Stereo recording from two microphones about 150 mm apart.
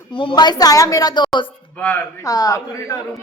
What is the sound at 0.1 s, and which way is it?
A woman's voice, 35° left (ahead or behind).